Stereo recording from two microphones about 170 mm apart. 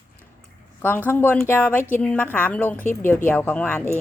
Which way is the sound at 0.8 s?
10° left (ahead or behind).